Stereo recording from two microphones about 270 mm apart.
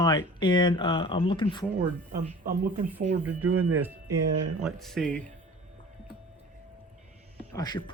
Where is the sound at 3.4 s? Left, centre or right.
Right.